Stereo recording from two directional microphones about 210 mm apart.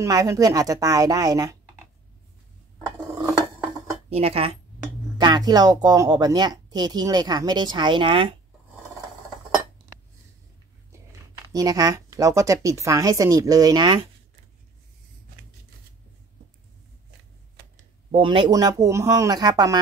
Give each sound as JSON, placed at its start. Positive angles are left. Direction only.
{"t": 0.0, "sound": "speech", "side_deg": -15}
{"t": 4.1, "sound": "a woman's voice", "side_deg": -30}
{"t": 11.5, "sound": "speech", "side_deg": -15}
{"t": 18.1, "sound": "speech", "side_deg": -25}